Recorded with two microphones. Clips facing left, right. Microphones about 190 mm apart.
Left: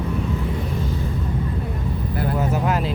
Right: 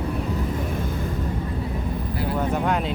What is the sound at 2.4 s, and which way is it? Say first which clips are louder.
Speech: even; 5° left (ahead or behind).